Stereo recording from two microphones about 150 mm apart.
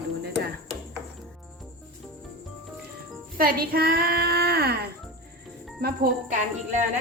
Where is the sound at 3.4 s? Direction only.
85° right.